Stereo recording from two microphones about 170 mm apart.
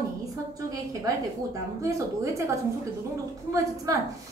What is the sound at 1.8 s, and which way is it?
A woman's voice, 15° right (ahead or behind).